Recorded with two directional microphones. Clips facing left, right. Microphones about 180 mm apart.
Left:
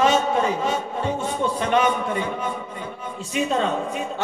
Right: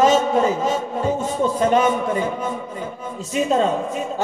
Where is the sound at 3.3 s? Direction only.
40° right (ahead or behind).